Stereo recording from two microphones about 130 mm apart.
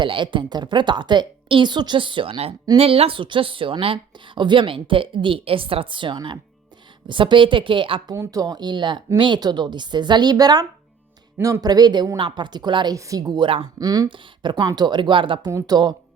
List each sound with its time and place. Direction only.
0.0 s a woman's voice: 40° right (ahead or behind)
8.1 s a woman's voice: 25° right (ahead or behind)
11.3 s speech: 20° right (ahead or behind)
11.6 s a woman's voice: 30° right (ahead or behind)
15.4 s a woman's voice: 30° right (ahead or behind)